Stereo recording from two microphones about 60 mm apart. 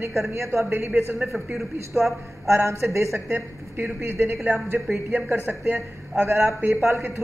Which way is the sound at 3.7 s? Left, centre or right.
Right.